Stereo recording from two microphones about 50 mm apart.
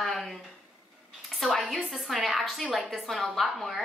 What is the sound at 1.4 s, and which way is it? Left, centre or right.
A woman's voice, centre.